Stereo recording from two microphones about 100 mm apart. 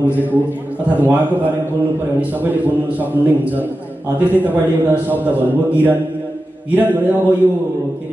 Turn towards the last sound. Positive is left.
turn(degrees=-15)  # may be behind; listen again after turning